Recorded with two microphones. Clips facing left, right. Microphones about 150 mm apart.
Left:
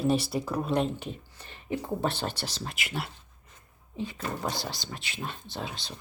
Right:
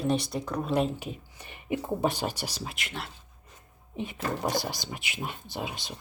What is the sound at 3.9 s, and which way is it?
Speech, 20° right (ahead or behind).